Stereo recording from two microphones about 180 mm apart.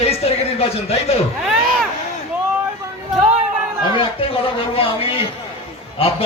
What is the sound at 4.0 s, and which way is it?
A man's voice, 30° left (ahead or behind).